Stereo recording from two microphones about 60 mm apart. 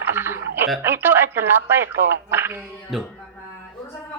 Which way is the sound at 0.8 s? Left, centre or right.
Right.